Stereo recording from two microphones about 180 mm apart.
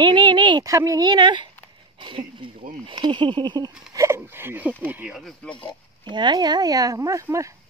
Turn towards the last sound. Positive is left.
turn(degrees=-15)  # may be behind; listen again after turning